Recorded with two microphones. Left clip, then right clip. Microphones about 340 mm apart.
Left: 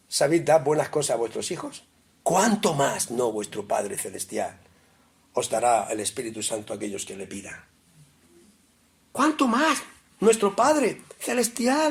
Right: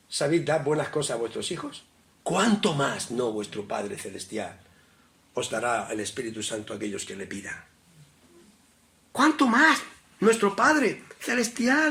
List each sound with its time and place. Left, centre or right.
0.1 s speech: centre
9.1 s speech: centre